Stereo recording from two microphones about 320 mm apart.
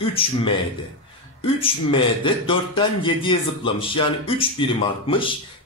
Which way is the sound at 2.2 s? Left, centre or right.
Centre.